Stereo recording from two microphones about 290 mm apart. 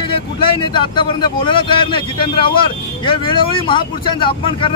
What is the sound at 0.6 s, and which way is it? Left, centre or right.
Speech, centre.